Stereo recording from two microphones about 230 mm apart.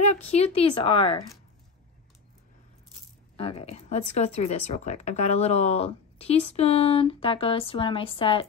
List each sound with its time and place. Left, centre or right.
0.0 s speech: left
3.3 s speech: left